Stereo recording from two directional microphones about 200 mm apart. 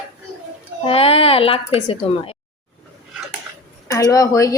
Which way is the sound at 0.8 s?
30° left (ahead or behind).